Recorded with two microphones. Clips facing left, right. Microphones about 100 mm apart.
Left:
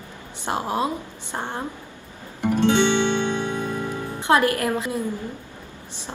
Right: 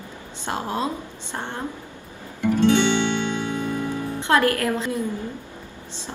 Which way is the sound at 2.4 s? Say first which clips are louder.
Right 1 dB; 20° left (ahead or behind).